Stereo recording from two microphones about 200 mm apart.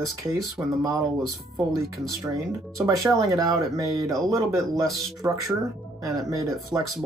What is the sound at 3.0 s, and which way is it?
Speech, 15° right (ahead or behind).